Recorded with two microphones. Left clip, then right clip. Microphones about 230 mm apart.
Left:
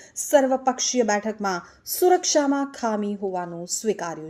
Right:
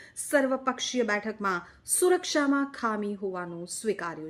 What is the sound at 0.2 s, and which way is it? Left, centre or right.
Speech, centre.